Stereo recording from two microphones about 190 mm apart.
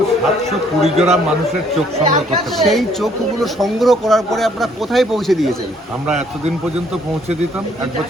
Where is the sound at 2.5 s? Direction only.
Centre (ahead or behind).